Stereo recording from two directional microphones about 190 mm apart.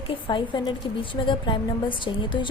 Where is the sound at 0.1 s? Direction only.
25° left (ahead or behind).